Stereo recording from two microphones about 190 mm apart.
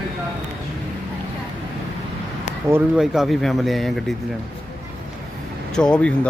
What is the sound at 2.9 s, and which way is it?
A man's voice, centre (ahead or behind).